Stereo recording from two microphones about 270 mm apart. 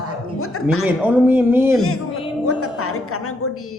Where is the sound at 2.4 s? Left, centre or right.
Left.